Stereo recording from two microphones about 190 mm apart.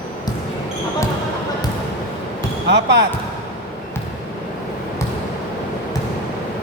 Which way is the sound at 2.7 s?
65° right (ahead or behind).